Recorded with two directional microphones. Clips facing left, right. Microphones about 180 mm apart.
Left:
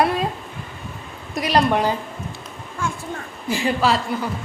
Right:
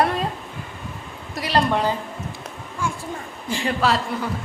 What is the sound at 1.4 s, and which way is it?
Speech, 15° left (ahead or behind).